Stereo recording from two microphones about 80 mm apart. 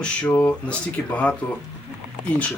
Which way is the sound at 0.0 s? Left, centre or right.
Centre.